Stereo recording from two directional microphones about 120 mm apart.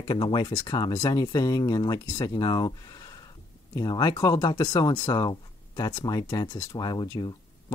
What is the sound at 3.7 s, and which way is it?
Speech, 35° left (ahead or behind).